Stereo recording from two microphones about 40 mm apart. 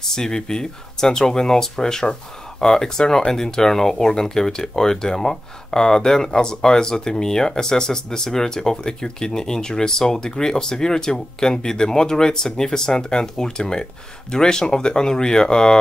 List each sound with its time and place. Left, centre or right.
0.0 s speech: centre